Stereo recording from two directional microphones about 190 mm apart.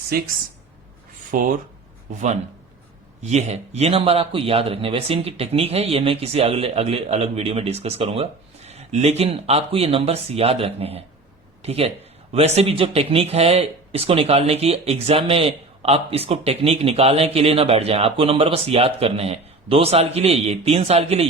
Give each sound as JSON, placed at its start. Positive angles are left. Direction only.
{"t": 0.1, "sound": "speech", "side_deg": -50}
{"t": 1.3, "sound": "speech", "side_deg": -45}
{"t": 3.2, "sound": "speech", "side_deg": -35}